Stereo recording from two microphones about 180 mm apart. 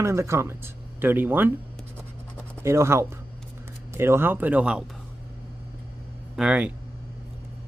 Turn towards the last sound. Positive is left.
turn(degrees=-5)  # may be behind; listen again after turning